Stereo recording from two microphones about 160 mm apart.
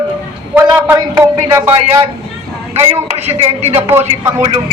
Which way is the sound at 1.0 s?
20° right (ahead or behind).